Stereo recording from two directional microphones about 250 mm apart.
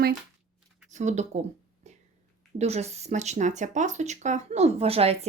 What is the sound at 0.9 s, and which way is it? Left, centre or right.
Speech, right.